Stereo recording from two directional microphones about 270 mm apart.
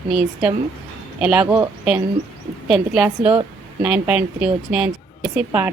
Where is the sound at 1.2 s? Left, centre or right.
Centre.